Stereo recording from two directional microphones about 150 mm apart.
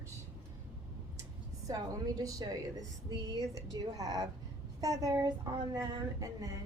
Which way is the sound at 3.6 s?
25° right (ahead or behind).